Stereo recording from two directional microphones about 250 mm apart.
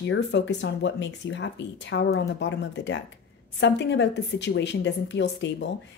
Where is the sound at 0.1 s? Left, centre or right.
Left.